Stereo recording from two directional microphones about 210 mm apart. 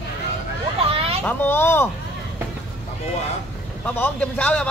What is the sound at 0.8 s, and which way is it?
Children playing, 25° right (ahead or behind).